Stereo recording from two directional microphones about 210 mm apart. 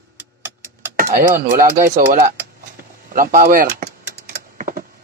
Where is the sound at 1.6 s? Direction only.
35° right (ahead or behind).